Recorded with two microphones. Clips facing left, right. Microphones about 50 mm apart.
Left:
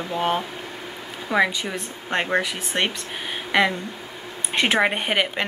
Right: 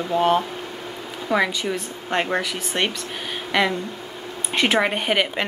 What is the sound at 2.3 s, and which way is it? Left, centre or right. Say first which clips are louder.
Speech: left 1 dB; centre.